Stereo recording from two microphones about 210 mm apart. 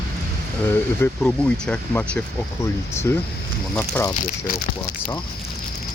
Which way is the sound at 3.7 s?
10° left (ahead or behind).